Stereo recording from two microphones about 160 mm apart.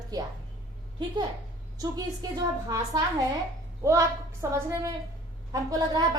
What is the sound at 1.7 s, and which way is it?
A woman's voice, 25° right (ahead or behind).